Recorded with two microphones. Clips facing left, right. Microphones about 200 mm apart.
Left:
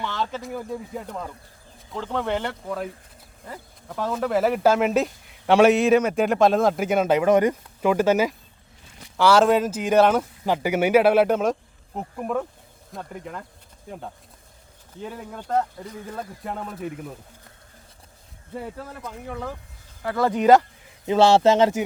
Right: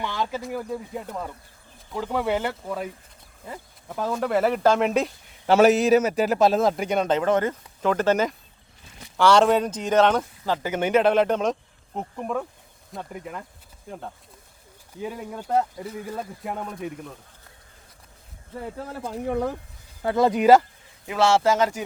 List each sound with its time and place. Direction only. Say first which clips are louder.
0.0 s a sound: even; 10° right (ahead or behind)
0.4 s speech: right 1 dB; centre (ahead or behind)
15.0 s speech: right 2 dB; 10° right (ahead or behind)
18.9 s speech: right 7 dB; 35° right (ahead or behind)
20.0 s speech: right 2 dB; 25° right (ahead or behind); by 20.7 s 5° right (ahead or behind)
21.1 s speech: left 4 dB; 30° left (ahead or behind)